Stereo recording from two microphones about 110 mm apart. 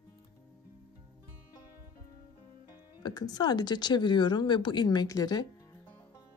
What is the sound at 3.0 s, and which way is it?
Speech, 40° left (ahead or behind).